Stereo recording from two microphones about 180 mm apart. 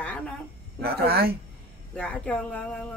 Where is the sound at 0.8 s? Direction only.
60° right (ahead or behind).